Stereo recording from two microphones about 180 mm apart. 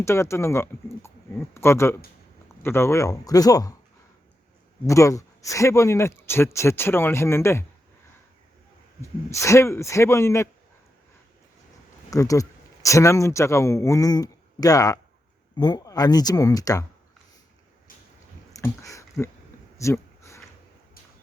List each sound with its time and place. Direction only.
0.0 s speech: 15° left (ahead or behind)
4.9 s a man's voice: 15° left (ahead or behind)
9.0 s a man's voice: 15° left (ahead or behind)
12.1 s speech: 20° left (ahead or behind)
18.5 s speech: 20° left (ahead or behind)
19.8 s a sound: 15° left (ahead or behind)